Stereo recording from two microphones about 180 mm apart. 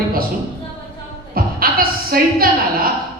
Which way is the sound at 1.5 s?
55° right (ahead or behind).